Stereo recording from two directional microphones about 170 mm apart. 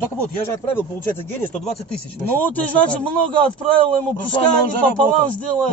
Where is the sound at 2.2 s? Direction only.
10° left (ahead or behind).